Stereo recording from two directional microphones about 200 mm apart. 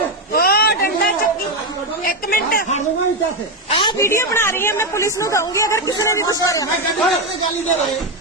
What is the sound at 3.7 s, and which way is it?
Speech, 25° left (ahead or behind).